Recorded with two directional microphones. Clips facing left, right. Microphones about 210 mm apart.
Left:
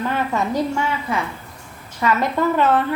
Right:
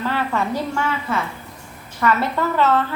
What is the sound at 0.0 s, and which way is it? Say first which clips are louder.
Speech: left 1 dB; 15° left (ahead or behind).